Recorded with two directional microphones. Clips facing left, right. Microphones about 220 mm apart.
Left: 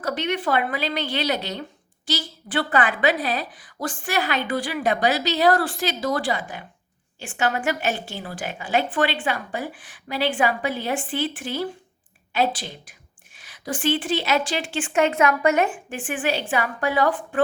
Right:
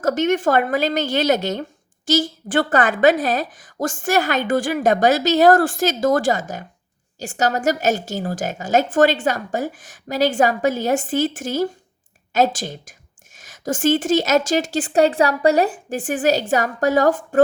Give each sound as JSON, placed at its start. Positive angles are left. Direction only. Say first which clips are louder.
{"t": 0.0, "sound": "a woman's voice", "louder": "right 7 dB", "side_deg": -45}